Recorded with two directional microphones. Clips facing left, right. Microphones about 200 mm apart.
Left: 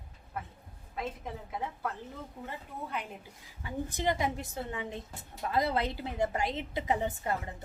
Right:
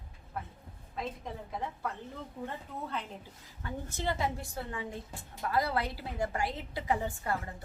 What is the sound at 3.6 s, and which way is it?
A woman's voice, 15° left (ahead or behind).